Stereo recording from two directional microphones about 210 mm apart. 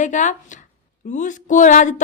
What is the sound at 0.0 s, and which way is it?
Speech, 35° left (ahead or behind).